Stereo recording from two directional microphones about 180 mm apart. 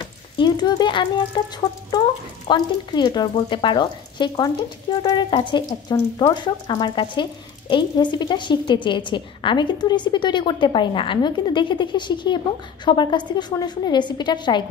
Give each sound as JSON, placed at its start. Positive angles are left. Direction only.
{"t": 0.0, "sound": "a woman's voice", "side_deg": 25}